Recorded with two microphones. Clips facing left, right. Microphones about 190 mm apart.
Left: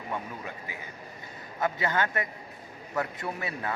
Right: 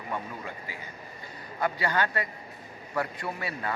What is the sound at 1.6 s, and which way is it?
A man's voice, 20° left (ahead or behind).